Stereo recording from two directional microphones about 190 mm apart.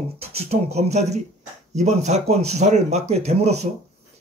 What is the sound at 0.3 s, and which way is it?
Speech, 35° right (ahead or behind).